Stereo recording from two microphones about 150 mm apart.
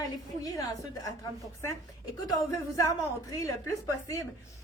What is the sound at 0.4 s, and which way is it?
Speech, 20° left (ahead or behind).